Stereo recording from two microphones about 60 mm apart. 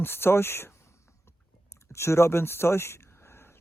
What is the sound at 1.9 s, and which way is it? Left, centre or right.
Speech, left.